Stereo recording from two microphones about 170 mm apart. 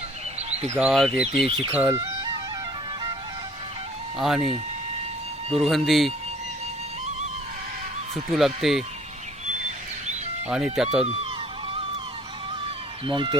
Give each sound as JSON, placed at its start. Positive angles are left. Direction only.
{"t": 0.3, "sound": "bird", "side_deg": -40}
{"t": 0.8, "sound": "speech", "side_deg": 0}
{"t": 1.8, "sound": "music", "side_deg": -20}
{"t": 4.2, "sound": "speech", "side_deg": 0}
{"t": 5.5, "sound": "speech", "side_deg": 0}
{"t": 8.3, "sound": "speech", "side_deg": 0}
{"t": 10.5, "sound": "speech", "side_deg": -5}
{"t": 11.0, "sound": "speech", "side_deg": -35}
{"t": 13.1, "sound": "speech", "side_deg": -30}